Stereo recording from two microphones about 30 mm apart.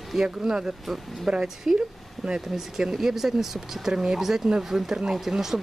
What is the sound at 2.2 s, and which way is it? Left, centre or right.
Speech, right.